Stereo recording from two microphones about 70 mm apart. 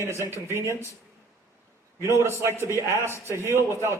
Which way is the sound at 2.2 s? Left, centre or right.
Right.